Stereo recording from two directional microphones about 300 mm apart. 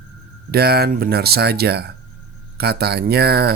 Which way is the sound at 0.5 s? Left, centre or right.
Right.